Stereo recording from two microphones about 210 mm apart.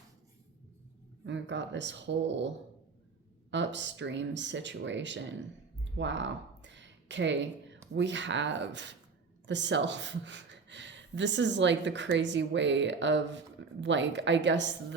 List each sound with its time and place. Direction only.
1.2 s speech: 60° right (ahead or behind)
3.5 s speech: 60° right (ahead or behind)
6.0 s a sound: 60° right (ahead or behind)
7.9 s speech: 60° right (ahead or behind)